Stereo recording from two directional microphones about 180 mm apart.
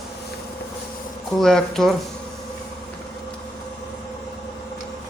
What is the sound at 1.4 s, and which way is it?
Speech, 5° left (ahead or behind).